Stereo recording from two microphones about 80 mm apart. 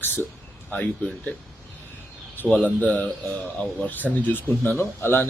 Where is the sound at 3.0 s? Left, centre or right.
Centre.